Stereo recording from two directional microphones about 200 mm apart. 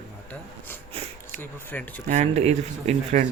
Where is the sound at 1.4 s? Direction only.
10° left (ahead or behind).